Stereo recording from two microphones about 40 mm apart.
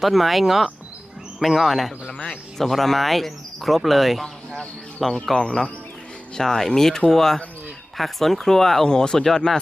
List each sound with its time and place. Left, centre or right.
0.0 s speech: centre
5.2 s speech: centre